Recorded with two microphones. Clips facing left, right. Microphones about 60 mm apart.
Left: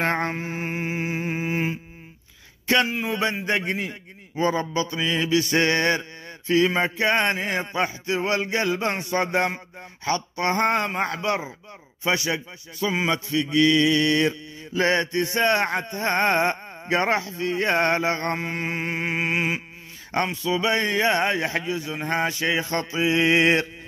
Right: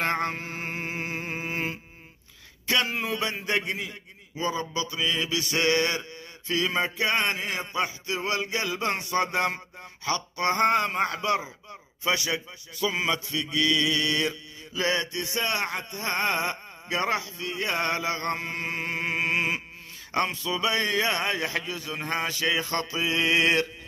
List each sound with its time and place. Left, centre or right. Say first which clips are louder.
0.0 s mantra: left 3 dB; left; by 1.8 s centre
3.1 s a man's voice: left 5 dB; left
3.6 s mantra: left 5 dB; left
8.7 s a man's voice: left 2 dB; left
10.0 s mantra: left 2 dB; left
11.0 s a man's voice: left 1 dB; left
13.1 s mantra: left 6 dB; left
18.4 s a sound: left 4 dB; left
20.2 s a man's voice: left 4 dB; left